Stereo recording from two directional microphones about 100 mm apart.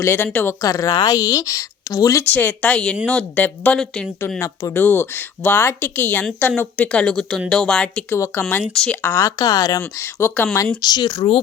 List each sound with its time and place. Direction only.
0.0 s speech: 25° left (ahead or behind)
0.6 s a woman's voice: 35° left (ahead or behind)
2.3 s speech: 20° left (ahead or behind)
3.8 s speech: 5° left (ahead or behind)
4.4 s speech: 30° left (ahead or behind); by 8.0 s 10° left (ahead or behind)
8.1 s speech: 25° left (ahead or behind)
8.7 s speech: 5° left (ahead or behind)
9.0 s speech: 25° left (ahead or behind)
9.4 s a woman's voice: 40° left (ahead or behind)
10.0 s speech: 25° left (ahead or behind)
10.8 s speech: 45° left (ahead or behind)